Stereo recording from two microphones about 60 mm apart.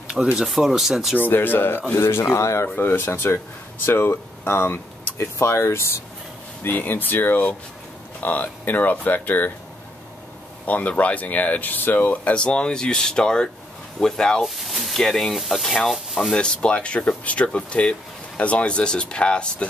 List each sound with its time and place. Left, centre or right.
0.1 s speech: centre
1.2 s speech: left
2.7 s speech: left
6.7 s speech: left
10.7 s speech: left
14.4 s speech: centre
16.3 s speech: centre